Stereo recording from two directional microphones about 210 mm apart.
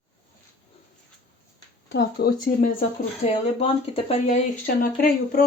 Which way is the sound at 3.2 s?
30° left (ahead or behind).